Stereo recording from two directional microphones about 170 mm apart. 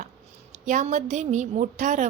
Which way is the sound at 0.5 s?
45° right (ahead or behind).